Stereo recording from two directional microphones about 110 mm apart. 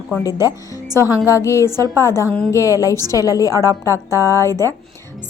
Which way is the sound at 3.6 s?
30° right (ahead or behind).